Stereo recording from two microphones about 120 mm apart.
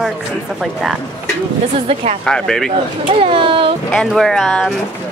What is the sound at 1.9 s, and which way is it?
Speech, 65° right (ahead or behind).